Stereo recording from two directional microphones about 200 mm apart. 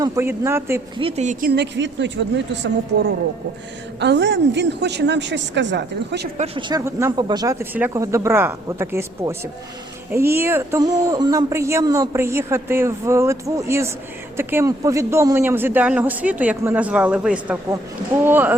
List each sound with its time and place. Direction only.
0.0 s speech: 10° right (ahead or behind)
0.9 s a woman's voice: 30° right (ahead or behind); by 2.6 s 65° right (ahead or behind)
4.0 s a woman's voice: 60° right (ahead or behind)
6.3 s speech: 30° right (ahead or behind); by 18.5 s 10° right (ahead or behind)